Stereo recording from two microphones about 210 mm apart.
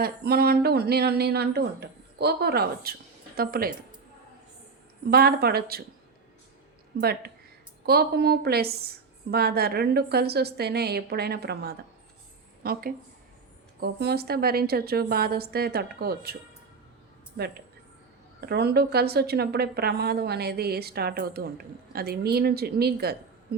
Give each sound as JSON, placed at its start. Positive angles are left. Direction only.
{"t": 0.0, "sound": "a woman's voice", "side_deg": -50}
{"t": 5.1, "sound": "a woman's voice", "side_deg": -45}
{"t": 6.9, "sound": "a woman's voice", "side_deg": -50}